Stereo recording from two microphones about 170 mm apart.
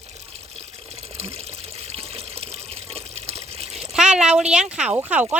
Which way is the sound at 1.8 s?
35° right (ahead or behind).